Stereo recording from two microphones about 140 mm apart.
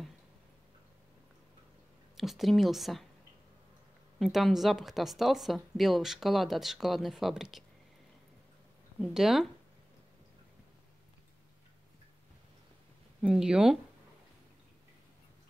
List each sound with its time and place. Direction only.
2.1 s speech: centre (ahead or behind)
4.2 s speech: centre (ahead or behind)
9.0 s speech: 5° right (ahead or behind)
13.2 s speech: 5° right (ahead or behind)